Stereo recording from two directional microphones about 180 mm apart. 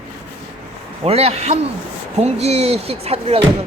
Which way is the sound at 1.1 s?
35° right (ahead or behind).